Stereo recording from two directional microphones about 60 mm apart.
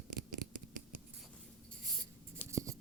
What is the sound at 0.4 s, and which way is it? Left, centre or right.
Scissors, right.